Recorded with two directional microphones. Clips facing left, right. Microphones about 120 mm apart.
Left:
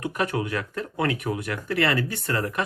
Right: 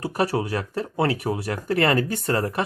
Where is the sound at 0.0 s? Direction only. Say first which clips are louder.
Right 3 dB; 35° right (ahead or behind).